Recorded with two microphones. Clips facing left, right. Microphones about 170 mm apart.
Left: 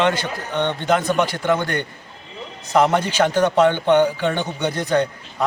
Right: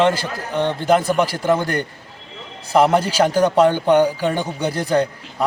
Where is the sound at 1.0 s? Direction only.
10° right (ahead or behind).